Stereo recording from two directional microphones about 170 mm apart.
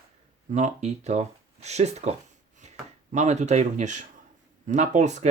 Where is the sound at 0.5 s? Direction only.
45° right (ahead or behind).